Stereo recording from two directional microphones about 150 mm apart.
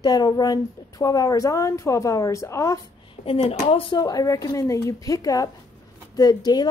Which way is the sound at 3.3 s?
40° left (ahead or behind).